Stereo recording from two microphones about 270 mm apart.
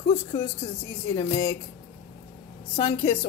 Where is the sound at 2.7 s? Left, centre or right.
Centre.